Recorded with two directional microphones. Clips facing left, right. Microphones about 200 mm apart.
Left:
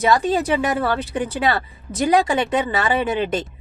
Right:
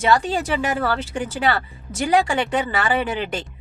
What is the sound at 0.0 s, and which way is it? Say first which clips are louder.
Speech: left 2 dB; 20° left (ahead or behind).